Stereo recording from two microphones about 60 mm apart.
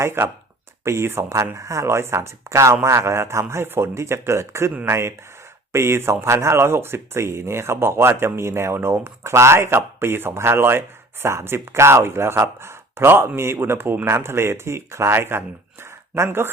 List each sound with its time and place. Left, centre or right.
0.0 s speech: right